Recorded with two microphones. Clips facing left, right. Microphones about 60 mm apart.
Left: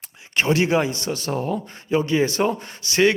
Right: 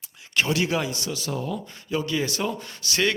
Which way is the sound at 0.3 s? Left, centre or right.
Left.